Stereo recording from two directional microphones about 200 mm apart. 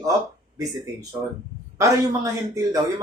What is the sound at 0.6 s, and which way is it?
Speech, 20° right (ahead or behind).